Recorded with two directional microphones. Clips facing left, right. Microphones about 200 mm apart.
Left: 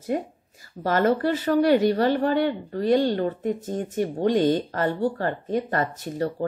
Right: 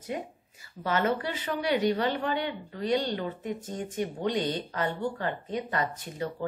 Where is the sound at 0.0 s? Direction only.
45° left (ahead or behind).